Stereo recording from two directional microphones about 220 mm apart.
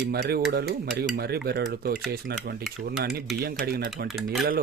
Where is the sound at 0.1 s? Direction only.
45° right (ahead or behind).